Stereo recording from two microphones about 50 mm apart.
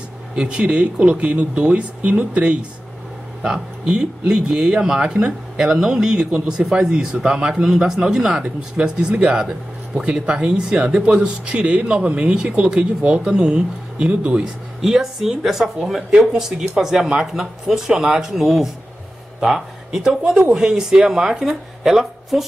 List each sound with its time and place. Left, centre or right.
0.4 s speech: right
14.4 s speech: centre